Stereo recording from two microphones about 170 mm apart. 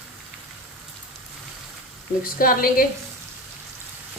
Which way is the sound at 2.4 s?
60° left (ahead or behind).